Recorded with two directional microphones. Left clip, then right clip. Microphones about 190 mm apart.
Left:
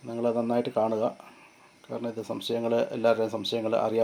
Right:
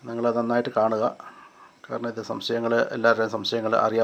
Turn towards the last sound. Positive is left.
turn(degrees=-5)  # may be behind; listen again after turning